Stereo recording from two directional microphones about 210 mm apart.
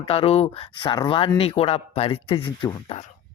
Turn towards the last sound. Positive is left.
turn(degrees=25)  # may be behind; listen again after turning